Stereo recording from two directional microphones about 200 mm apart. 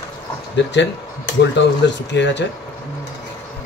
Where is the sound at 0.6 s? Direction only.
60° left (ahead or behind).